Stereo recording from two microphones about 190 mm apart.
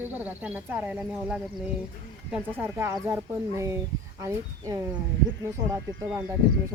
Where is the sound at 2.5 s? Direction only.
10° right (ahead or behind).